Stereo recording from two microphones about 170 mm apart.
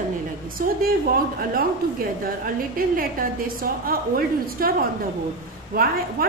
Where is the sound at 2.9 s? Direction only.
60° right (ahead or behind).